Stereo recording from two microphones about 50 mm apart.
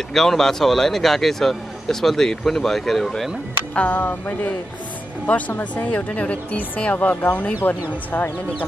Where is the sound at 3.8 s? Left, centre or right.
Left.